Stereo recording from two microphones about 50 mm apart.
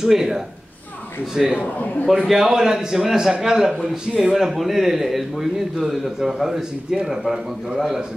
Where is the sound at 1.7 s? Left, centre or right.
Left.